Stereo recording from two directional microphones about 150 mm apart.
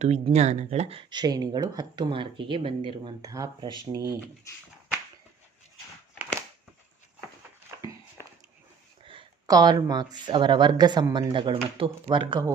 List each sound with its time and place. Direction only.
0.3 s speech: 45° right (ahead or behind); by 4.2 s 20° right (ahead or behind)
4.5 s a sound: 20° left (ahead or behind)
9.0 s speech: 30° right (ahead or behind)